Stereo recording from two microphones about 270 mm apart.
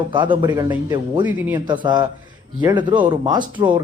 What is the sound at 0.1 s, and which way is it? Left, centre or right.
A man's voice, centre.